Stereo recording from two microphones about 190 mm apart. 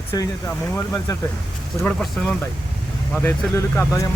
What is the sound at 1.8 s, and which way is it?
Speech, 5° left (ahead or behind).